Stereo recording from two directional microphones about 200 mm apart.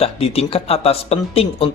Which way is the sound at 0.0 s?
30° left (ahead or behind).